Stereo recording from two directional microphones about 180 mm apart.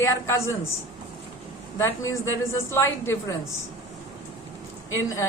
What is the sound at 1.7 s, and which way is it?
Speech, 15° left (ahead or behind).